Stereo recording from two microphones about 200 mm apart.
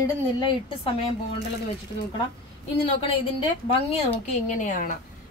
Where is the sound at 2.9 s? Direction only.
25° left (ahead or behind).